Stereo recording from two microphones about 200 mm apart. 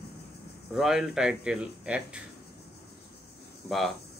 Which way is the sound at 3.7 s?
Centre (ahead or behind).